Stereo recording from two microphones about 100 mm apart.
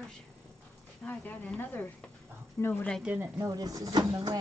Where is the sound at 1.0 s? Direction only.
15° left (ahead or behind).